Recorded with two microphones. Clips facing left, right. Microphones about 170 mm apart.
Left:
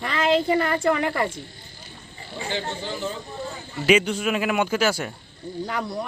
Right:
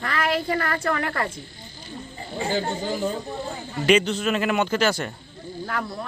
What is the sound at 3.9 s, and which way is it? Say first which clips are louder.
Speech: even; 10° left (ahead or behind).